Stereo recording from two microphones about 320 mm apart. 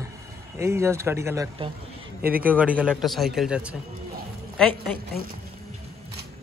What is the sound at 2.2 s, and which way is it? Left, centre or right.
Speech, right.